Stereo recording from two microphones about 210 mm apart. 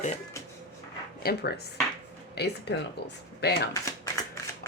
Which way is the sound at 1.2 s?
45° left (ahead or behind).